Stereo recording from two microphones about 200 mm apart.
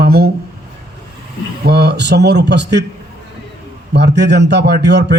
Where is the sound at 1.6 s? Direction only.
55° right (ahead or behind).